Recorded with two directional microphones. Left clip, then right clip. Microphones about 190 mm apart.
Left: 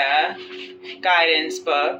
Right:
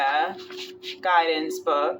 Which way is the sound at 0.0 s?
15° right (ahead or behind).